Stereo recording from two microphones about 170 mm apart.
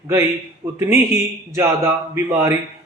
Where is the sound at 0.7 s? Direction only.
15° right (ahead or behind).